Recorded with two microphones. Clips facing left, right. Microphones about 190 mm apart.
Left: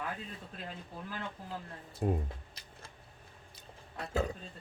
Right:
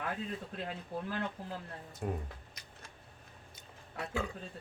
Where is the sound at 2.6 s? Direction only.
30° left (ahead or behind).